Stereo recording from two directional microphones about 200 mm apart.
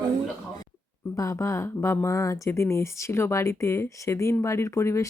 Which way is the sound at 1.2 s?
15° left (ahead or behind).